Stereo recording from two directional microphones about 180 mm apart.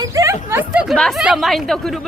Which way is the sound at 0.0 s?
20° right (ahead or behind).